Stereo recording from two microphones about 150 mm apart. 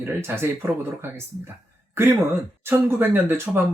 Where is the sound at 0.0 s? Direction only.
15° right (ahead or behind).